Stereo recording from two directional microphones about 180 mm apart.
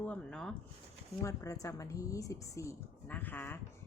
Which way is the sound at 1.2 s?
20° left (ahead or behind).